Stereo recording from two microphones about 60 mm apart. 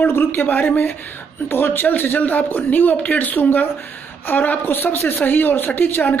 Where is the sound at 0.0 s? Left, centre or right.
Left.